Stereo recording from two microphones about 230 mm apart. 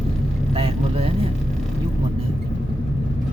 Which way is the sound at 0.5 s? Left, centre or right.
Right.